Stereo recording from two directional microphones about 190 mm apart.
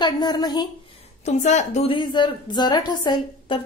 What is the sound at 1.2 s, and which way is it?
A woman's voice, 40° left (ahead or behind).